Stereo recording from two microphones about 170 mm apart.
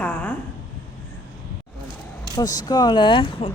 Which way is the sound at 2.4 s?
20° left (ahead or behind).